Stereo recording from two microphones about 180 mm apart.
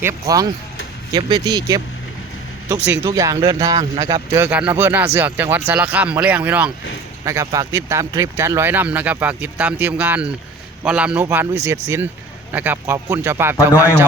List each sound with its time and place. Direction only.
0.0 s speech: 20° right (ahead or behind)
3.1 s speech: 20° right (ahead or behind)